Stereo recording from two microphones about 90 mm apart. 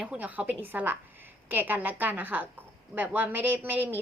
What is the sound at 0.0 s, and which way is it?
A woman's voice, 15° right (ahead or behind).